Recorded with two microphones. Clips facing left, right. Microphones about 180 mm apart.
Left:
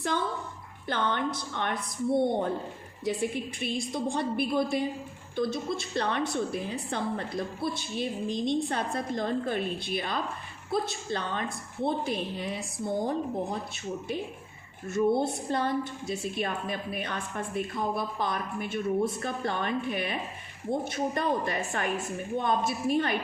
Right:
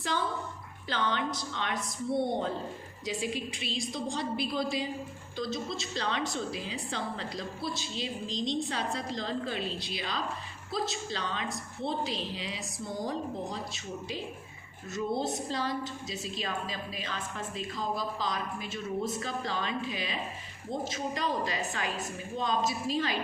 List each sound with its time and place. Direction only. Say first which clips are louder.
0.9 s a woman's voice: left 2 dB; 55° left (ahead or behind)
14.8 s a woman's voice: left 6 dB; 55° left (ahead or behind)